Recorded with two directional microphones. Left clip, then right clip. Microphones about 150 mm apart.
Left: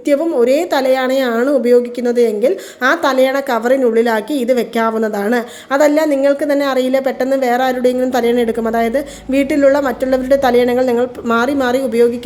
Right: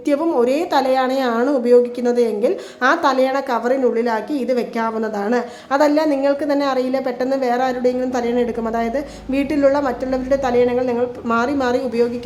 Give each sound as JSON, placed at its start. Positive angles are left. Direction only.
{"t": 0.1, "sound": "a woman's voice", "side_deg": 15}